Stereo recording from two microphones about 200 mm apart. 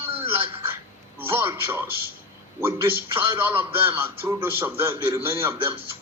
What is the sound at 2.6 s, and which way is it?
A man's voice, 10° right (ahead or behind).